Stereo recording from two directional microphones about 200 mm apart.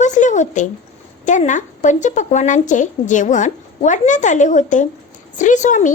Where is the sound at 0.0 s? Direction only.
40° left (ahead or behind).